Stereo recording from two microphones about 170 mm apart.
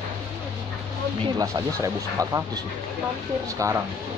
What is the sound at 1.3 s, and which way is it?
Speech, 20° right (ahead or behind).